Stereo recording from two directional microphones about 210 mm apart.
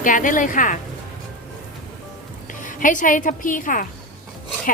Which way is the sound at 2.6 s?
40° left (ahead or behind).